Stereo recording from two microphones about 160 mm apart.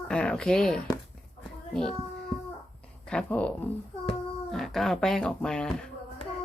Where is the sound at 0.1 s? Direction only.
5° left (ahead or behind).